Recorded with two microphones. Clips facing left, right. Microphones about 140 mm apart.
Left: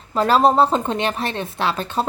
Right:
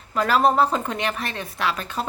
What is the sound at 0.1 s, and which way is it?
A woman's voice, 30° left (ahead or behind).